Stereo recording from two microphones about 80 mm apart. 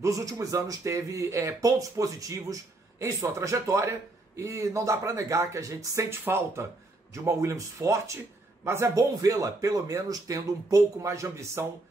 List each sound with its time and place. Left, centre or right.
0.0 s speech: right
6.0 s speech: right
9.2 s speech: right